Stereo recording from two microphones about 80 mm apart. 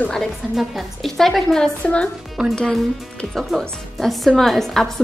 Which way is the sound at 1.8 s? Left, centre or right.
Centre.